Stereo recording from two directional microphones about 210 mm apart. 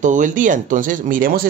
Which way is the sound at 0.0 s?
35° right (ahead or behind).